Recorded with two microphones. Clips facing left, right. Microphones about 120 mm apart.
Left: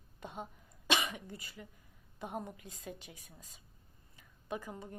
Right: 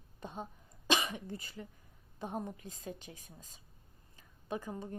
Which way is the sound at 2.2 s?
10° left (ahead or behind).